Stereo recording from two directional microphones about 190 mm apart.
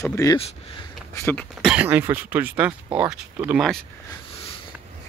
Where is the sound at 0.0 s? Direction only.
15° left (ahead or behind).